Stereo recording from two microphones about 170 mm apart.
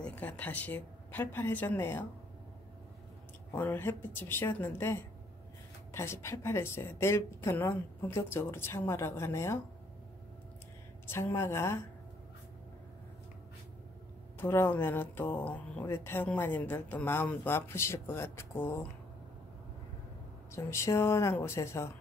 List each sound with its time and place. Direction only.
0.0 s speech: 10° left (ahead or behind)
3.5 s speech: 10° left (ahead or behind)
11.1 s speech: 15° left (ahead or behind)
14.4 s speech: 15° left (ahead or behind)
20.5 s speech: 15° left (ahead or behind)